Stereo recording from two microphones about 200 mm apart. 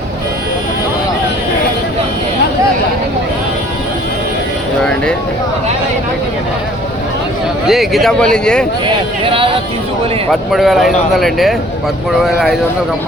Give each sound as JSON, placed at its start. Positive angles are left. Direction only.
{"t": 4.8, "sound": "a sound", "side_deg": 5}
{"t": 7.7, "sound": "speech", "side_deg": 0}
{"t": 9.2, "sound": "speech", "side_deg": -25}
{"t": 10.5, "sound": "speech", "side_deg": 0}